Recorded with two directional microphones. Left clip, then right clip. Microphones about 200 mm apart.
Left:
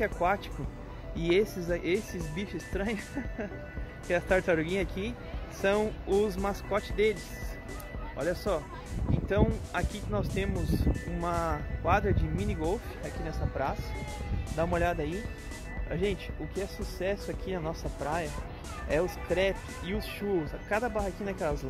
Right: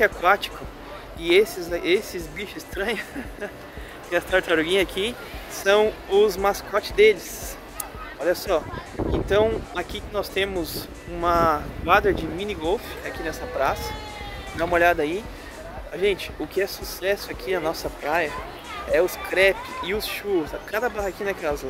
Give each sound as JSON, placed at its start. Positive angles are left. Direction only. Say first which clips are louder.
{"t": 0.0, "sound": "speech", "louder": "right 10 dB", "side_deg": 0}
{"t": 1.2, "sound": "speech", "louder": "right 8 dB", "side_deg": 10}
{"t": 4.1, "sound": "speech", "louder": "right 5 dB", "side_deg": 0}
{"t": 8.2, "sound": "speech", "louder": "right 8 dB", "side_deg": -15}
{"t": 9.3, "sound": "speech", "louder": "right 8 dB", "side_deg": 0}